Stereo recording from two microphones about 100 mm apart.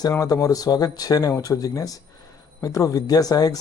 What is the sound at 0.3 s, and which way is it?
Speech, 35° left (ahead or behind).